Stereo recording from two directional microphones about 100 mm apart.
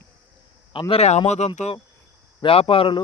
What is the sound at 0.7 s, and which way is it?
Speech, 55° left (ahead or behind).